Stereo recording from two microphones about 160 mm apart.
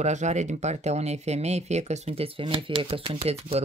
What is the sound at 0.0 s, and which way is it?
Speech, 45° right (ahead or behind).